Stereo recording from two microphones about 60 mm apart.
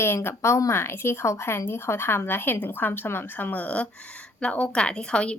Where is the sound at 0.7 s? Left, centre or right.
Left.